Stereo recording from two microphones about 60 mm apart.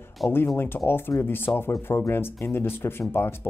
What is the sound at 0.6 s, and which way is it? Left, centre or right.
Speech, left.